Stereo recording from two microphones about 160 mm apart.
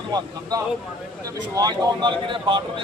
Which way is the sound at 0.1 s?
25° right (ahead or behind).